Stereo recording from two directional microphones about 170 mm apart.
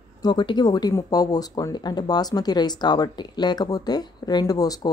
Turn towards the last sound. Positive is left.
turn(degrees=20)  # may be behind; listen again after turning